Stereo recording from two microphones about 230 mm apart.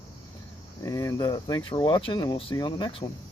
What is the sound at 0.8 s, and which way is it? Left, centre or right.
Speech, centre.